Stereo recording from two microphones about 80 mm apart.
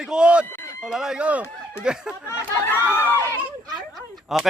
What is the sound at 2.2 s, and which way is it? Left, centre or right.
Speech, left.